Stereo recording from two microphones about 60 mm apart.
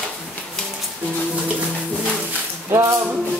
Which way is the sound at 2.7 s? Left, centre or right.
Right.